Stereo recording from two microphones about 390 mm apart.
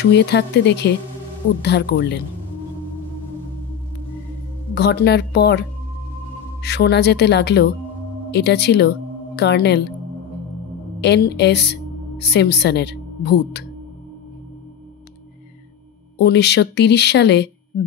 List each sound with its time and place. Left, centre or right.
0.0 s speech: left
4.7 s speech: left
11.0 s a woman's voice: left
16.2 s speech: left